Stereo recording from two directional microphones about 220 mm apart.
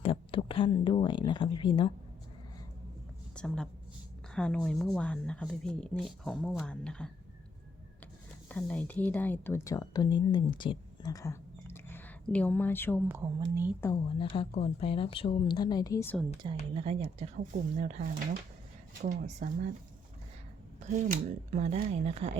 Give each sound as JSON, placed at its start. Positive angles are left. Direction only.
{"t": 0.0, "sound": "speech", "side_deg": 25}
{"t": 3.3, "sound": "a woman's voice", "side_deg": 5}
{"t": 8.4, "sound": "speech", "side_deg": 5}
{"t": 13.1, "sound": "speech", "side_deg": -10}
{"t": 13.8, "sound": "speech", "side_deg": 20}
{"t": 16.7, "sound": "speech", "side_deg": -25}
{"t": 20.8, "sound": "speech", "side_deg": -35}